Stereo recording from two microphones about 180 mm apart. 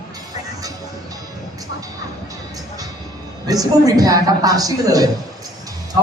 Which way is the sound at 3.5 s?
20° right (ahead or behind).